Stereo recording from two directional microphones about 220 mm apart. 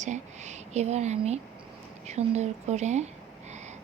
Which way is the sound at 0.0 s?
30° right (ahead or behind).